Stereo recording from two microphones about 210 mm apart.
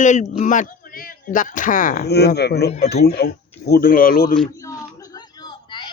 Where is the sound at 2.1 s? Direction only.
50° left (ahead or behind).